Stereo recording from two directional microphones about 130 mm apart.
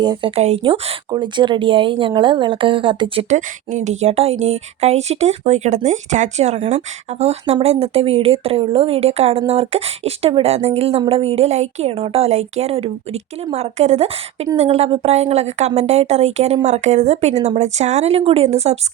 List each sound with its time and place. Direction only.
0.0 s a woman's voice: 35° right (ahead or behind); by 0.6 s 50° right (ahead or behind)
0.6 s speech: 40° right (ahead or behind)
3.2 s a woman's voice: 65° right (ahead or behind)